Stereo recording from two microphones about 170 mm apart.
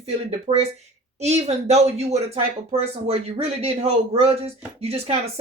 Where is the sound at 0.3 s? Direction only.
35° right (ahead or behind).